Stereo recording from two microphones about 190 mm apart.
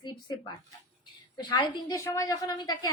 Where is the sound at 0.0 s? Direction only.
25° left (ahead or behind).